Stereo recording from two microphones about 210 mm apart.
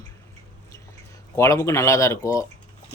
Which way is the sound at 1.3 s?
15° left (ahead or behind).